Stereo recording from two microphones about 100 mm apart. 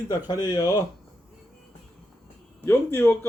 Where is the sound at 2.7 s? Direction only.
20° left (ahead or behind).